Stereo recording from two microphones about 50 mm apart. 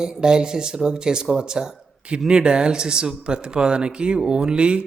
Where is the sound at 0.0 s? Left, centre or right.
Centre.